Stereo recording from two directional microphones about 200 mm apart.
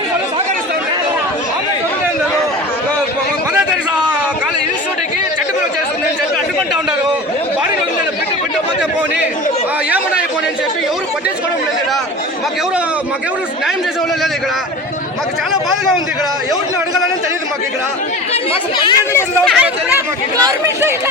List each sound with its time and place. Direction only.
18.8 s speech: 20° left (ahead or behind)
19.5 s speech: 10° right (ahead or behind)